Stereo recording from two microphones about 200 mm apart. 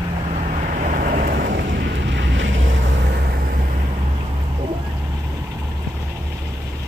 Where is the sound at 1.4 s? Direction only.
65° right (ahead or behind).